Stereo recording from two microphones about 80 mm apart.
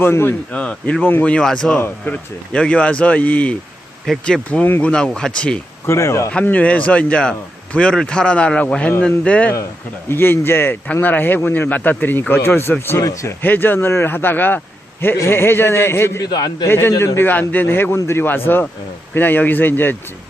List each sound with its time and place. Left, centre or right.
0.0 s a man's voice: left
0.5 s a man's voice: centre
1.8 s a man's voice: centre
5.8 s a man's voice: left
6.4 s a man's voice: centre
10.1 s a man's voice: left
13.0 s speech: left
13.4 s a man's voice: left
16.2 s a man's voice: left
16.6 s a man's voice: left